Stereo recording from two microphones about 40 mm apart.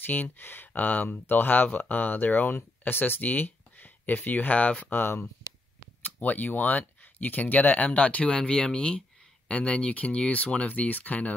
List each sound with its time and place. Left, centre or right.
0.0 s speech: left
4.8 s speech: left
6.0 s speech: left